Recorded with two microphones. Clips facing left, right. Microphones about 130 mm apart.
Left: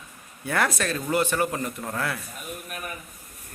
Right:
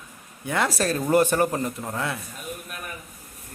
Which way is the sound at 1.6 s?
30° right (ahead or behind).